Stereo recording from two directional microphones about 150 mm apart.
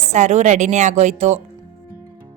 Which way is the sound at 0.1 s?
50° right (ahead or behind).